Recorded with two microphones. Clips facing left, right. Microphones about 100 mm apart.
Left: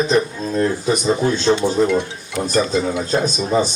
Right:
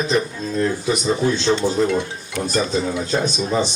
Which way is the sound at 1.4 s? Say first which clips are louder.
Left 4 dB; 5° left (ahead or behind).